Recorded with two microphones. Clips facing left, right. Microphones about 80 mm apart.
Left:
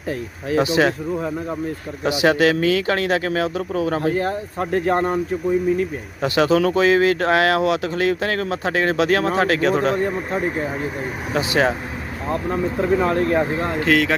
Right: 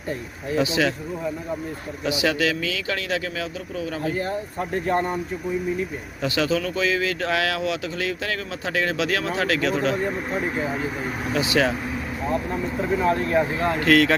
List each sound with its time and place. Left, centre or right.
0.5 s speech: left
2.0 s speech: left
4.1 s speech: left
6.2 s speech: left
11.3 s speech: left
12.5 s speech: left
13.7 s speech: centre